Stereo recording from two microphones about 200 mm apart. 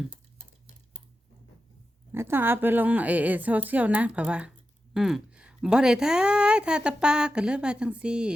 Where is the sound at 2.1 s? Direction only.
10° right (ahead or behind).